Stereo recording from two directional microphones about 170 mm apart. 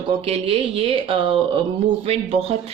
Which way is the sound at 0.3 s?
35° right (ahead or behind).